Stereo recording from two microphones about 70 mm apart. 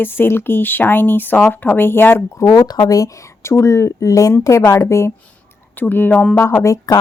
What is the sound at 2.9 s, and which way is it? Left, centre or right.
A woman's voice, left.